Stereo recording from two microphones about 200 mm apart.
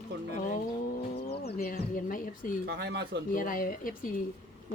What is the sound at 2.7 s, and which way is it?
Speech, 55° right (ahead or behind).